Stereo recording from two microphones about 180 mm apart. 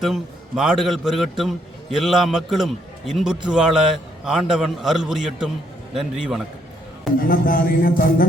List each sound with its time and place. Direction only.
0.0 s a man's voice: centre (ahead or behind)
7.2 s a man's voice: 50° left (ahead or behind)